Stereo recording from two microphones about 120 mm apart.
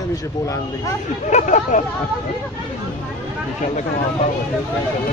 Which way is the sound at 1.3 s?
90° left.